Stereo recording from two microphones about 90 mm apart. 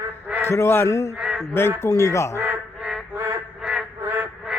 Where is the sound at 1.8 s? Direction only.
35° left (ahead or behind).